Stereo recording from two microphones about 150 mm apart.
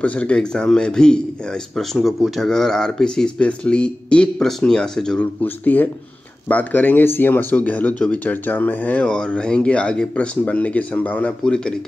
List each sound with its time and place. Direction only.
0.0 s a man's voice: 10° left (ahead or behind)